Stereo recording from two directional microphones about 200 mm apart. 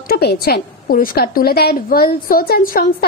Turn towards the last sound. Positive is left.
turn(degrees=45)  # may be behind; listen again after turning